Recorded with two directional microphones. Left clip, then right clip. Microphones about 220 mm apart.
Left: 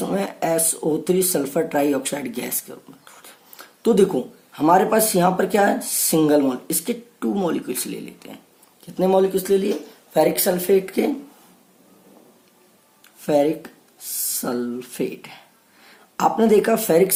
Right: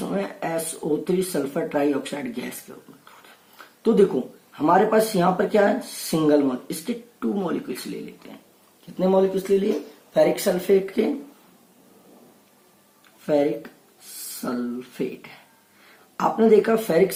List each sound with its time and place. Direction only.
0.1 s speech: 50° left (ahead or behind)
13.2 s speech: 45° left (ahead or behind)